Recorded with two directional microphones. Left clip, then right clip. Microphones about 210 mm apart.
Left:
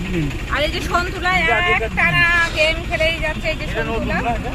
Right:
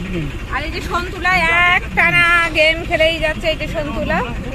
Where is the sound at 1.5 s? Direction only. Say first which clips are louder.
Right 4 dB; 50° right (ahead or behind).